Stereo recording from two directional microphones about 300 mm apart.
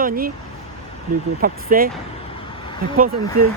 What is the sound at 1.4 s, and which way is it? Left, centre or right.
Speech, right.